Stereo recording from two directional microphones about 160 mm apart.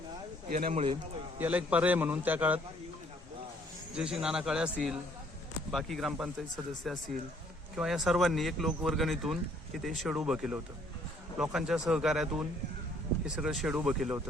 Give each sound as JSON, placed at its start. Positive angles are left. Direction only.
{"t": 0.5, "sound": "speech", "side_deg": -60}
{"t": 1.4, "sound": "a man's voice", "side_deg": -10}
{"t": 3.9, "sound": "speech", "side_deg": -5}